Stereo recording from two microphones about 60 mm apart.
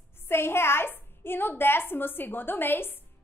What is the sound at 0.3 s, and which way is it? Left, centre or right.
A woman's voice, left.